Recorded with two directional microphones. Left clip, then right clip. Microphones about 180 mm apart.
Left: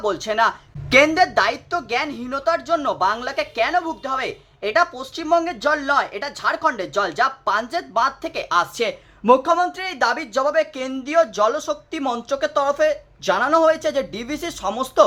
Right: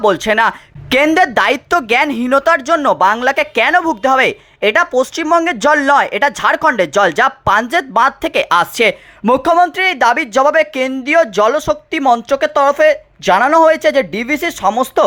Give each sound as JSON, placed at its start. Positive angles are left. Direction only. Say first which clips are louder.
{"t": 0.0, "sound": "a woman's voice", "louder": "right 8 dB", "side_deg": -40}
{"t": 2.7, "sound": "a woman's voice", "louder": "right 8 dB", "side_deg": -35}
{"t": 5.5, "sound": "speech", "louder": "right 9 dB", "side_deg": -45}